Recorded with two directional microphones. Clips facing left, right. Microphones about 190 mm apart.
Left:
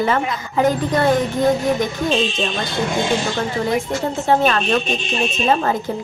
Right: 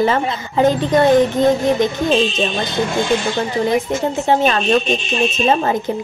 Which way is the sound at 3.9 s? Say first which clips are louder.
Right 2 dB; 20° right (ahead or behind).